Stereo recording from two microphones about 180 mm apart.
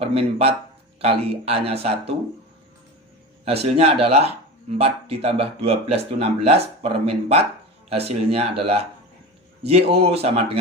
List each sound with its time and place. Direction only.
0.0 s speech: 35° right (ahead or behind)
3.4 s speech: 35° right (ahead or behind)